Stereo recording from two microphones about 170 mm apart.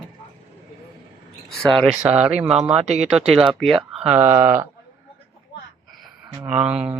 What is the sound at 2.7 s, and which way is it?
Speech, 40° right (ahead or behind).